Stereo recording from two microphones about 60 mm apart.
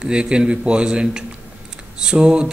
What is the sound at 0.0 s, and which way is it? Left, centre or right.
A man's voice, centre.